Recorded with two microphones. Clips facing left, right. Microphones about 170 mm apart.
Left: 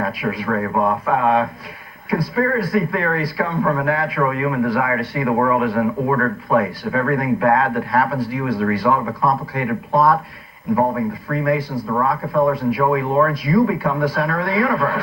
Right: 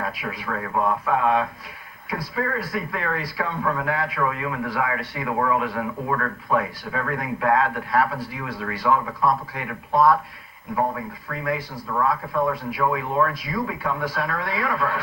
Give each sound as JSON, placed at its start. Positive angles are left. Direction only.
{"t": 0.0, "sound": "a man's voice", "side_deg": 55}
{"t": 0.7, "sound": "a man's voice", "side_deg": 45}
{"t": 3.4, "sound": "speech", "side_deg": 40}
{"t": 3.8, "sound": "a man's voice", "side_deg": 60}
{"t": 9.9, "sound": "speech", "side_deg": 35}
{"t": 10.8, "sound": "speech", "side_deg": 55}
{"t": 11.9, "sound": "speech", "side_deg": 40}